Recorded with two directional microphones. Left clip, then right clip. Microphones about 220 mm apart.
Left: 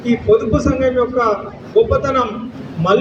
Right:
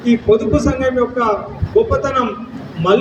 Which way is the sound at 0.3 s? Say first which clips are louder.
Left 1 dB; 50° right (ahead or behind).